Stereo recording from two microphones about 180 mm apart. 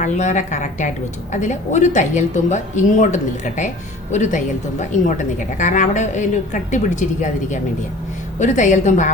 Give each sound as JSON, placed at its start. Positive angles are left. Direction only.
{"t": 0.0, "sound": "a woman's voice", "side_deg": 45}